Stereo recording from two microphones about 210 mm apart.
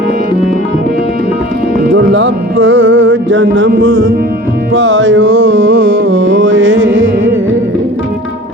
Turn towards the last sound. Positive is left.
turn(degrees=-70)  # may be behind; listen again after turning